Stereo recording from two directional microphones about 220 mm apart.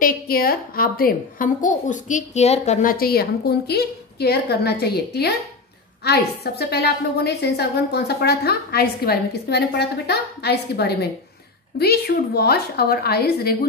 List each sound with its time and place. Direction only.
0.0 s a woman's voice: 40° left (ahead or behind)